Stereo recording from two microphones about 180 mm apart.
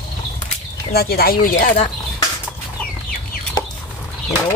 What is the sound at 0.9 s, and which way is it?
Speech, 55° left (ahead or behind).